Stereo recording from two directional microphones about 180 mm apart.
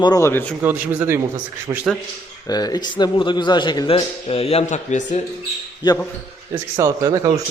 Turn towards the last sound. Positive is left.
turn(degrees=-20)  # may be behind; listen again after turning